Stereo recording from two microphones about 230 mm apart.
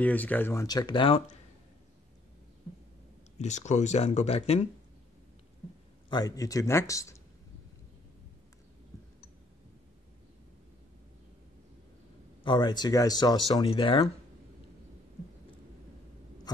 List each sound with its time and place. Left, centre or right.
0.0 s speech: centre; by 1.3 s left
3.3 s speech: left
6.0 s speech: centre
12.4 s speech: centre